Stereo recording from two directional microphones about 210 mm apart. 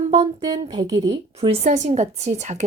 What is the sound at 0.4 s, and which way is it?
Speech, 20° right (ahead or behind).